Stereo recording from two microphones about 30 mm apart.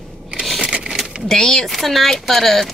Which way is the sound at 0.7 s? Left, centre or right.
Right.